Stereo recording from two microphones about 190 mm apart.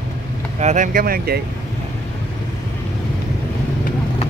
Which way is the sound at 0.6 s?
40° right (ahead or behind).